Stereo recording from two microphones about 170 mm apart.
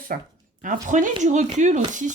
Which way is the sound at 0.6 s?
50° right (ahead or behind).